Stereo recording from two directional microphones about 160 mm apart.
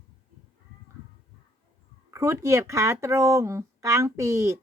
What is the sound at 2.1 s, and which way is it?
Speech, 20° right (ahead or behind).